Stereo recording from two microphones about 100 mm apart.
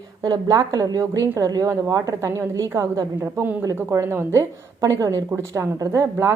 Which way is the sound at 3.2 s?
20° right (ahead or behind).